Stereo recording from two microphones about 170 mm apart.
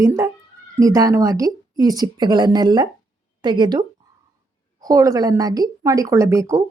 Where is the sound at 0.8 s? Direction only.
20° right (ahead or behind).